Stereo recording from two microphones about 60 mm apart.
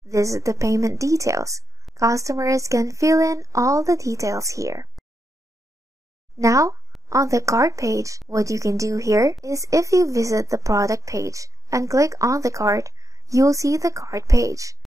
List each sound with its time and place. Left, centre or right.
0.1 s speech: right
6.3 s speech: right